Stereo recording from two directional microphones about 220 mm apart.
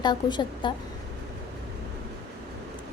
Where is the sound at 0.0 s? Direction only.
20° left (ahead or behind).